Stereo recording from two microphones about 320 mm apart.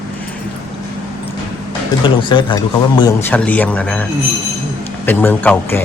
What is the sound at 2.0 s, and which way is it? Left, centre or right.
A man's voice, centre.